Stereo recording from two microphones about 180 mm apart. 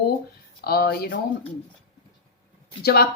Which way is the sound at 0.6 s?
60° left (ahead or behind).